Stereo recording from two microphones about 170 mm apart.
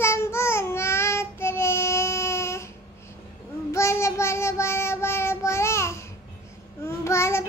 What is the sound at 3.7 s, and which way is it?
Child singing, 15° left (ahead or behind).